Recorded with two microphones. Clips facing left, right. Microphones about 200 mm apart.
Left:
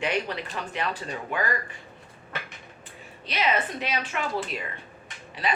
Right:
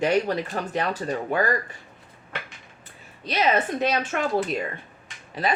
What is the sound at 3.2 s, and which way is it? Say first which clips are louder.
Speech: right 4 dB; 45° right (ahead or behind).